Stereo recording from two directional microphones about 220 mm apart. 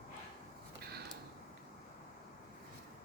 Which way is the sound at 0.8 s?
45° right (ahead or behind).